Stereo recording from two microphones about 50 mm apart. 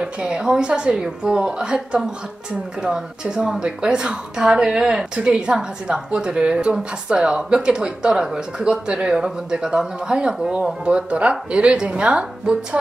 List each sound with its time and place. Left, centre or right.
0.0 s a woman's voice: centre